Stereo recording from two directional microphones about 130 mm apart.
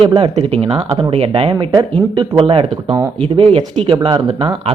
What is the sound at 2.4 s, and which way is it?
Speech, 45° right (ahead or behind).